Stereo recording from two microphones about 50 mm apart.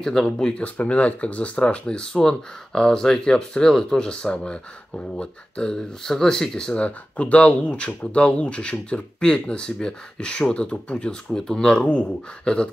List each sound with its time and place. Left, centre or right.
0.0 s speech: centre
0.7 s speech: left